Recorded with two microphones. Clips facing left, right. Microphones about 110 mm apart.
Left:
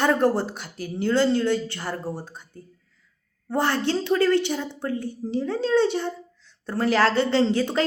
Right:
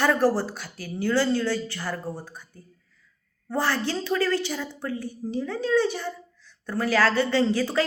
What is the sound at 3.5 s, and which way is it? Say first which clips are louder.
Speech: left 3 dB; 20° left (ahead or behind).